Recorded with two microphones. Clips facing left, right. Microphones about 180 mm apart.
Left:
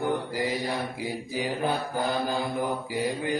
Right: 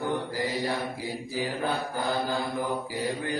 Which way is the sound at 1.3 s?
15° left (ahead or behind).